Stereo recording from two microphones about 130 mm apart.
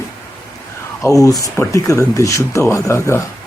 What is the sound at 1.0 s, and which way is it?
Speech, 25° left (ahead or behind).